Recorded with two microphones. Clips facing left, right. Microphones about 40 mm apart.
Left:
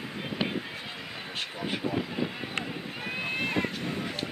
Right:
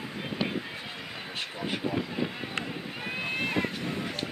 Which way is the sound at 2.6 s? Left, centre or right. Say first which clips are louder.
Even; centre.